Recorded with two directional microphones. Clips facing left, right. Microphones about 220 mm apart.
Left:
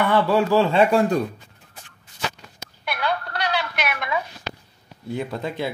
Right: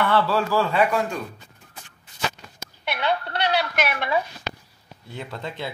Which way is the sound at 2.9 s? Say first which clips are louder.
Right 1 dB; 25° right (ahead or behind).